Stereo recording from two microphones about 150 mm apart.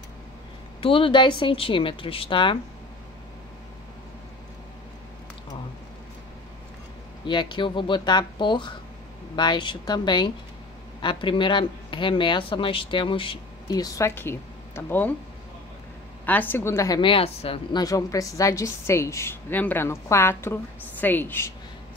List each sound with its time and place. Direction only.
0.7 s speech: 35° left (ahead or behind)
7.2 s a woman's voice: 30° left (ahead or behind); by 15.1 s 10° left (ahead or behind)
16.3 s a woman's voice: 10° left (ahead or behind)
17.0 s speech: 40° left (ahead or behind)
17.7 s a woman's voice: 25° left (ahead or behind)